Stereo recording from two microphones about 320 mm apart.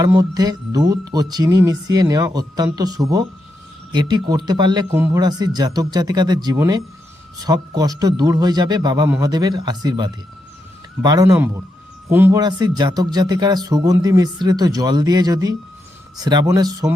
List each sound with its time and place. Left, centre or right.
0.0 s speech: centre